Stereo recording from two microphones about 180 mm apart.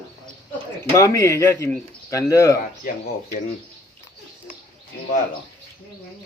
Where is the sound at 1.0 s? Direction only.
15° left (ahead or behind).